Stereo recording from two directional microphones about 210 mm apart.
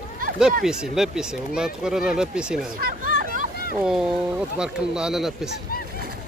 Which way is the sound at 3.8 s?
5° right (ahead or behind).